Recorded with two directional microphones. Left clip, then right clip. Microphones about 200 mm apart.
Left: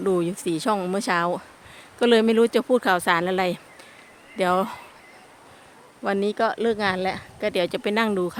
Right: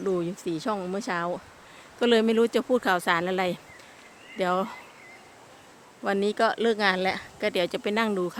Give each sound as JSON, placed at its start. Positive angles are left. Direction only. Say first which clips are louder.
{"t": 0.0, "sound": "speech", "louder": "left 5 dB", "side_deg": 35}
{"t": 2.0, "sound": "speech", "louder": "left 4 dB", "side_deg": 25}
{"t": 6.0, "sound": "speech", "louder": "left 1 dB", "side_deg": 15}